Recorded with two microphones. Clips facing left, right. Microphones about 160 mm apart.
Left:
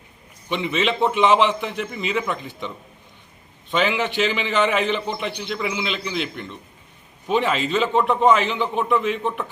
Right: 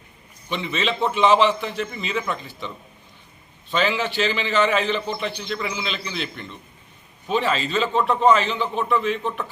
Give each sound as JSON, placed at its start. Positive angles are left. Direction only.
{"t": 0.5, "sound": "a man's voice", "side_deg": 15}